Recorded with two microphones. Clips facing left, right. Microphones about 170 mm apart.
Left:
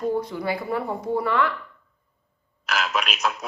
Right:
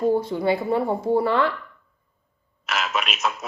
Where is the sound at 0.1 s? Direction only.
25° right (ahead or behind).